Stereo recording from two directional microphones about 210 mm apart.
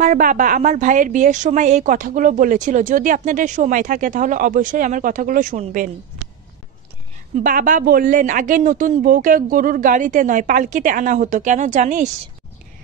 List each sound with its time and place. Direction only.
0.0 s a woman's voice: 35° right (ahead or behind)
7.4 s a woman's voice: 40° right (ahead or behind)